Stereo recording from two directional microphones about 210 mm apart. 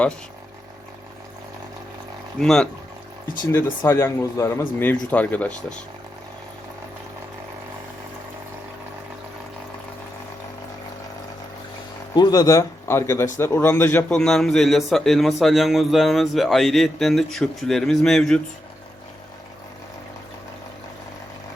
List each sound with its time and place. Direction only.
2.4 s a man's voice: 5° left (ahead or behind)
12.1 s a man's voice: 20° left (ahead or behind); by 18.3 s centre (ahead or behind)